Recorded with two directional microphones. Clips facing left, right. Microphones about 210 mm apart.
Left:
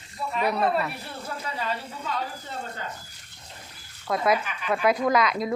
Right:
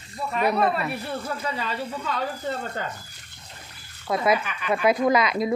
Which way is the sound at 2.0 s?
75° right (ahead or behind).